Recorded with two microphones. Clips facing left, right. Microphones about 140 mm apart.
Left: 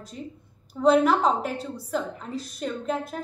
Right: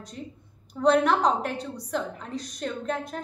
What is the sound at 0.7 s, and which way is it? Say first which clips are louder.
A woman's voice: left 2 dB; 5° left (ahead or behind).